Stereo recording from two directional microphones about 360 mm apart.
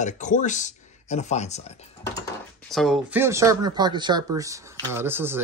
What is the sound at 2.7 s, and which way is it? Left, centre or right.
Speech, centre.